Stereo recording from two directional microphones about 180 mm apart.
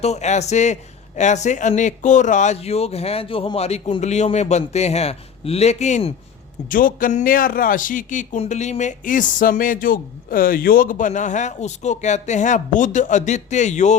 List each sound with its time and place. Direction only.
0.0 s speech: 40° left (ahead or behind)
6.7 s speech: 50° left (ahead or behind)